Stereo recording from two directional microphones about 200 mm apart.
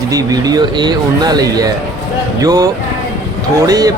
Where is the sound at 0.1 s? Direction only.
20° right (ahead or behind).